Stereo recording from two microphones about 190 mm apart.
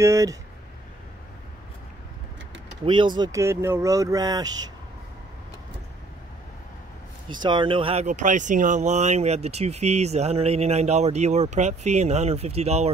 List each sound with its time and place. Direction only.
0.0 s speech: 15° right (ahead or behind)
2.8 s speech: 25° right (ahead or behind)
7.2 s speech: 25° right (ahead or behind)